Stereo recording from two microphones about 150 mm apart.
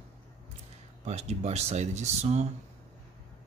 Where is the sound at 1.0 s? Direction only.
45° right (ahead or behind).